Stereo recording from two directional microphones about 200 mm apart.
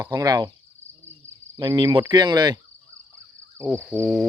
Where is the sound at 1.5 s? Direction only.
20° right (ahead or behind).